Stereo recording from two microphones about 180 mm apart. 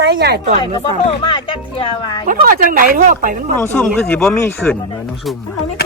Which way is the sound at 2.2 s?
50° right (ahead or behind).